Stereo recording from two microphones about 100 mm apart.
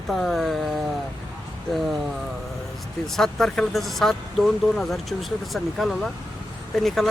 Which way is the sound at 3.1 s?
5° left (ahead or behind).